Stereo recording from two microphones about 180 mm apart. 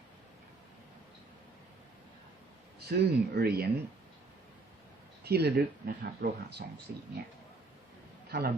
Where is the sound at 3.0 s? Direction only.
60° right (ahead or behind).